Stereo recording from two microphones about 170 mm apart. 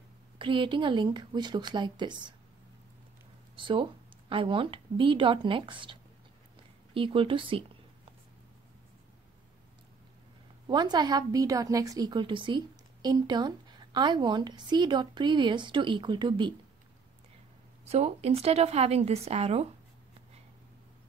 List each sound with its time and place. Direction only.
0.4 s a woman's voice: 30° right (ahead or behind)
3.5 s a woman's voice: 30° right (ahead or behind)
10.7 s a woman's voice: 25° right (ahead or behind)
17.8 s a woman's voice: 40° right (ahead or behind)